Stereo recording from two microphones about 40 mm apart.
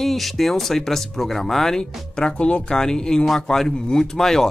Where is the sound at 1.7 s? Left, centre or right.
Centre.